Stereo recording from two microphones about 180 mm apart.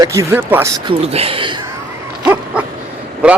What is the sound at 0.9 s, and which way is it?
Speech, 35° right (ahead or behind).